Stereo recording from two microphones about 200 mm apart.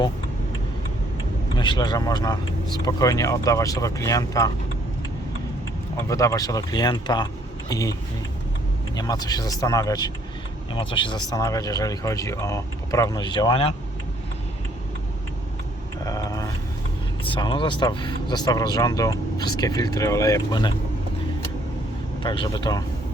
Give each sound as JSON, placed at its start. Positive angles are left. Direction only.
{"t": 1.5, "sound": "speech", "side_deg": 20}
{"t": 6.1, "sound": "speech", "side_deg": 15}
{"t": 9.0, "sound": "speech", "side_deg": 20}
{"t": 16.0, "sound": "a sound", "side_deg": 15}
{"t": 17.2, "sound": "speech", "side_deg": 25}
{"t": 22.2, "sound": "speech", "side_deg": 25}